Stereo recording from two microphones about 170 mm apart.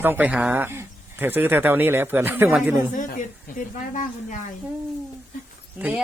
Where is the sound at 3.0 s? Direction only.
50° left (ahead or behind).